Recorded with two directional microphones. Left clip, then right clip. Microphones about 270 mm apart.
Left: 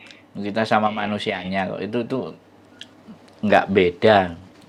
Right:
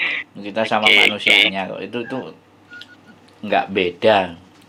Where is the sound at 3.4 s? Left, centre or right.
Left.